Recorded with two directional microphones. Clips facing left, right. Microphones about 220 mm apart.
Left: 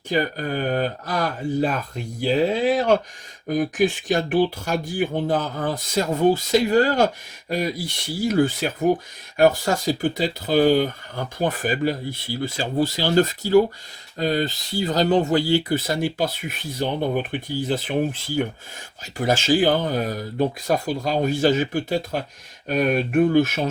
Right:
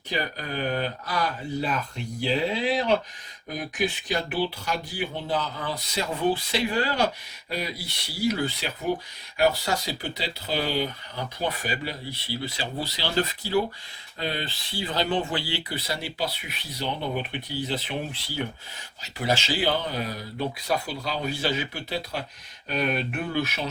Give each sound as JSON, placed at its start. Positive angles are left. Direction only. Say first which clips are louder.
{"t": 0.1, "sound": "speech", "louder": "left 7 dB", "side_deg": 50}